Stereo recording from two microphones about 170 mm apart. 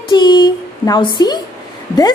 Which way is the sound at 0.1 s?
25° left (ahead or behind).